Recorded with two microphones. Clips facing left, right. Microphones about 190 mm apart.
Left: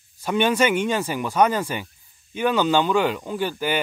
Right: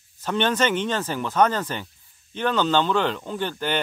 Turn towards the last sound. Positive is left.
turn(degrees=10)  # may be behind; listen again after turning